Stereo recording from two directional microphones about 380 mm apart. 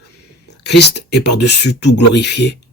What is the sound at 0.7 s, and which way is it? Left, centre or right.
Speech, left.